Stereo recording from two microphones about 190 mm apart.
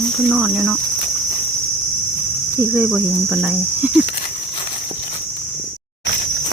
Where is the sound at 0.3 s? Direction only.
10° right (ahead or behind).